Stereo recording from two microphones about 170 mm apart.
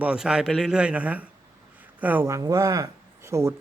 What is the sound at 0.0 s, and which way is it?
Speech, 5° right (ahead or behind).